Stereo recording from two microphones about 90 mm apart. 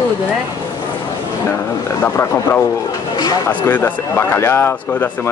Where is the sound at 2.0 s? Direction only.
20° left (ahead or behind).